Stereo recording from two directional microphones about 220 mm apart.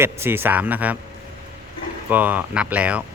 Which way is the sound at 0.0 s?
10° right (ahead or behind).